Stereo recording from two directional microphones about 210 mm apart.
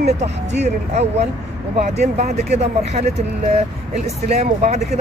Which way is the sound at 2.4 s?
30° right (ahead or behind).